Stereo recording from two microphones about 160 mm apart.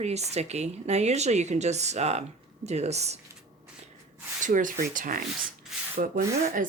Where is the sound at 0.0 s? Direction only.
45° right (ahead or behind).